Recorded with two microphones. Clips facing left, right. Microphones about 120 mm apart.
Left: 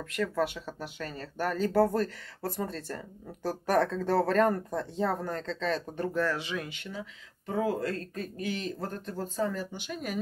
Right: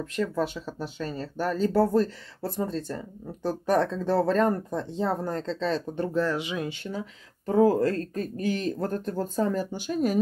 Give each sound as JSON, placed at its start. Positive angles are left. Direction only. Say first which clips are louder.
{"t": 0.1, "sound": "speech", "louder": "right 1 dB", "side_deg": -30}
{"t": 6.8, "sound": "speech", "louder": "right 6 dB", "side_deg": -40}